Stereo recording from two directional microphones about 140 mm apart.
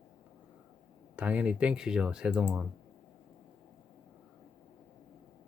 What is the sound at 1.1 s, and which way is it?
Speech, 10° right (ahead or behind).